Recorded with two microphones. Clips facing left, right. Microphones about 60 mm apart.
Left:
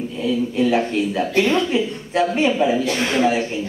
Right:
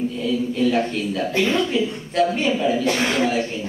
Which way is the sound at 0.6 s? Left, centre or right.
Centre.